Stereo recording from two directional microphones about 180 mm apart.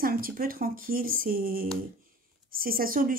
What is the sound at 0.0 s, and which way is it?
A woman's voice, 55° right (ahead or behind).